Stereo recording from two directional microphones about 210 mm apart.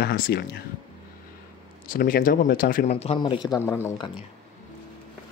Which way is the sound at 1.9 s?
40° left (ahead or behind).